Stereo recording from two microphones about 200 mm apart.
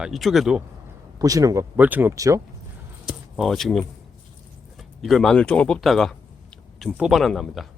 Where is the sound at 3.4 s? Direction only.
Centre (ahead or behind).